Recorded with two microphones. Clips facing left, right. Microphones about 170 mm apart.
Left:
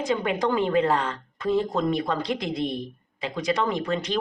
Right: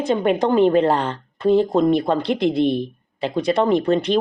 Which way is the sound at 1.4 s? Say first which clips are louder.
Right 8 dB; 60° right (ahead or behind).